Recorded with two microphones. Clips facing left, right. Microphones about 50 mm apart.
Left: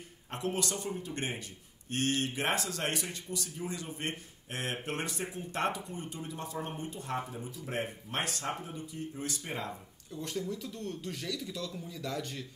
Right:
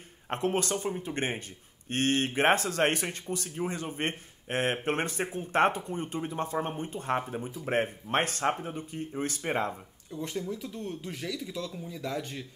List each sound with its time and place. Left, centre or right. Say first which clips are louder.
0.3 s speech: right 6 dB; right
9.7 s speech: right 4 dB; centre